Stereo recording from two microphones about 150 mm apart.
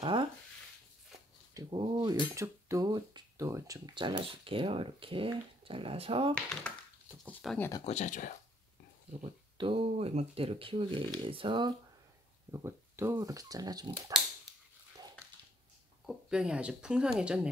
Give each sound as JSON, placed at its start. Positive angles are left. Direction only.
{"t": 0.0, "sound": "a sound", "side_deg": -35}
{"t": 1.5, "sound": "a sound", "side_deg": -20}
{"t": 1.8, "sound": "speech", "side_deg": -35}
{"t": 2.3, "sound": "speech", "side_deg": -20}
{"t": 6.7, "sound": "a sound", "side_deg": 5}
{"t": 7.4, "sound": "speech", "side_deg": 0}
{"t": 7.8, "sound": "speech", "side_deg": 50}
{"t": 9.2, "sound": "speech", "side_deg": -35}
{"t": 12.4, "sound": "speech", "side_deg": -15}
{"t": 16.1, "sound": "speech", "side_deg": -5}